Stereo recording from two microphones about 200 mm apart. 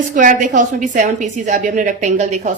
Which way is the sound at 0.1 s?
40° right (ahead or behind).